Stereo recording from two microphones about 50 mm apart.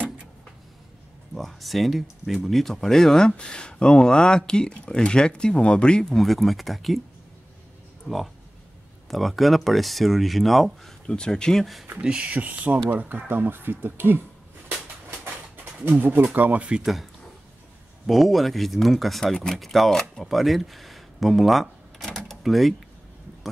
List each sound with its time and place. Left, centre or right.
1.3 s speech: centre
3.3 s speech: centre
6.2 s speech: centre
8.1 s speech: left
9.1 s speech: centre
11.1 s speech: centre
12.0 s speech: centre
12.3 s speech: right
16.0 s speech: right
16.3 s speech: right
16.8 s speech: centre